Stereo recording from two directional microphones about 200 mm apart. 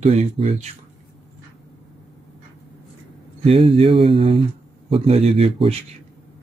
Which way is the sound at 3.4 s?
25° right (ahead or behind).